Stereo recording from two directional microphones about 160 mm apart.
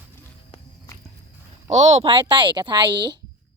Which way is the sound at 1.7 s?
45° right (ahead or behind).